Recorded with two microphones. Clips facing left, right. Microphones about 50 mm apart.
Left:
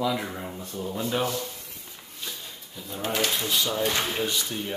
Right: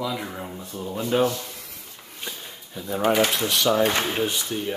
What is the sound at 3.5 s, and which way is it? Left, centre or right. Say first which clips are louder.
Speech: right 6 dB; right.